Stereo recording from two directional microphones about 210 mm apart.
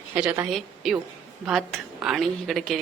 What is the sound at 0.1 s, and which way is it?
A woman's voice, 5° right (ahead or behind).